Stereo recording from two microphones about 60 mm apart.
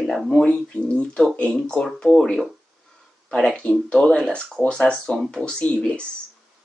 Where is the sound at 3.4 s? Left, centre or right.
Centre.